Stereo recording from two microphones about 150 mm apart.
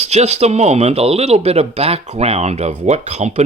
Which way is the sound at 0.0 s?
45° right (ahead or behind).